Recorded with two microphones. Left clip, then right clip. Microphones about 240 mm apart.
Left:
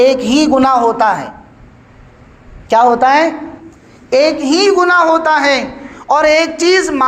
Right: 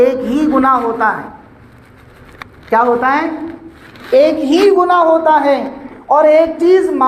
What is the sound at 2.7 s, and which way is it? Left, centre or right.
A man's voice, left.